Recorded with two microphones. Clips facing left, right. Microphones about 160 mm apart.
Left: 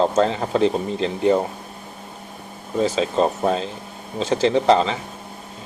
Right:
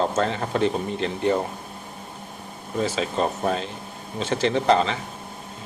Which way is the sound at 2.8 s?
35° left (ahead or behind).